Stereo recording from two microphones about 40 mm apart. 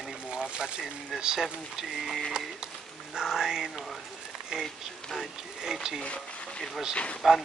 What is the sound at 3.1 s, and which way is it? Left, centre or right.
A woman's voice, centre.